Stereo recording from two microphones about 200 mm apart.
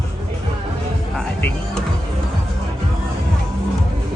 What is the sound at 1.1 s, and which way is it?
Music, 5° left (ahead or behind).